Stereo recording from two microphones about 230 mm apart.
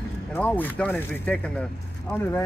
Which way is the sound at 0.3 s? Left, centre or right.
Centre.